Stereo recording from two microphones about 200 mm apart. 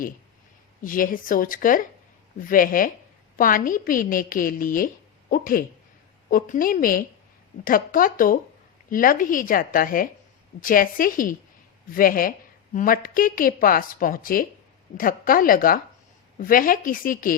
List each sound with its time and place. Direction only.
0.9 s a woman's voice: 45° left (ahead or behind)